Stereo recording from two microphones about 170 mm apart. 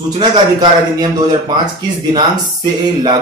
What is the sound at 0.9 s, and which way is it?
Speech, 25° right (ahead or behind).